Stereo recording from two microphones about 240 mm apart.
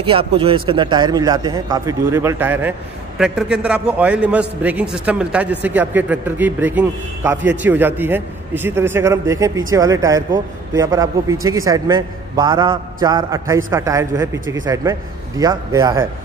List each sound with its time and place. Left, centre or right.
0.0 s a man's voice: right